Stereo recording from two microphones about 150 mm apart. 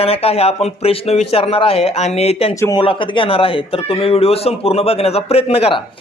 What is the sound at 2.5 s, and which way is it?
Speech, 20° left (ahead or behind).